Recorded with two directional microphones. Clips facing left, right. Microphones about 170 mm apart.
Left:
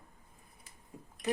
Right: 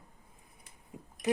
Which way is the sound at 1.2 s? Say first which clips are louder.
Right 3 dB; 20° right (ahead or behind).